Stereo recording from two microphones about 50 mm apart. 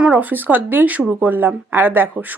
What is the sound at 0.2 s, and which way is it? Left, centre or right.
Speech, right.